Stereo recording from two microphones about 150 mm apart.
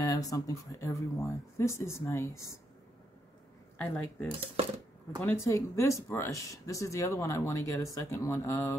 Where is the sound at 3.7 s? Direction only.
10° left (ahead or behind).